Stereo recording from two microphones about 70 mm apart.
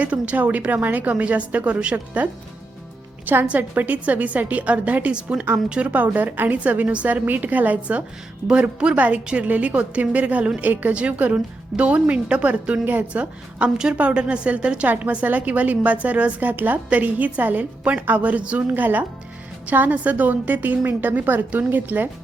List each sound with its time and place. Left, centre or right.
0.0 s a woman's voice: centre